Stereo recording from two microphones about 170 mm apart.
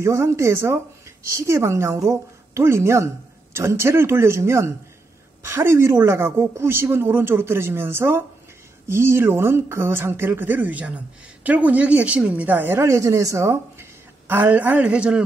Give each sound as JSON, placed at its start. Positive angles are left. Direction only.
{"t": 0.0, "sound": "a woman's voice", "side_deg": -15}